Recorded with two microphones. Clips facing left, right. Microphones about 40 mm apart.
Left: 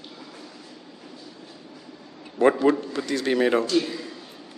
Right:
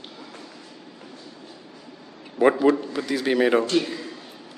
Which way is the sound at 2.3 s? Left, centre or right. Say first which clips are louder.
Right 1 dB; centre.